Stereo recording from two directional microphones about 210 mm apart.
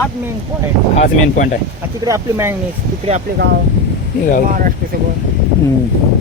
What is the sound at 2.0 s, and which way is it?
Speech, 15° right (ahead or behind).